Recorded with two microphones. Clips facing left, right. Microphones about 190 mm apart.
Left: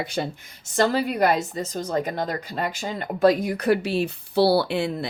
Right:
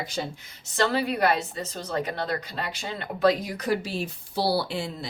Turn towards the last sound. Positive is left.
turn(degrees=60)  # may be behind; listen again after turning